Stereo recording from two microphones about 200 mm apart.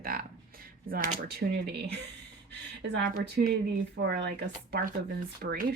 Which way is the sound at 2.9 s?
55° right (ahead or behind).